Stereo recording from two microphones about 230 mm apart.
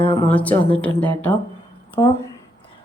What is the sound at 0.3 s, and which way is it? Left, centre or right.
A woman's voice, centre.